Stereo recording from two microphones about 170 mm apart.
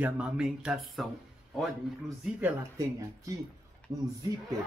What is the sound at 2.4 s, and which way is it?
Speech, 15° right (ahead or behind).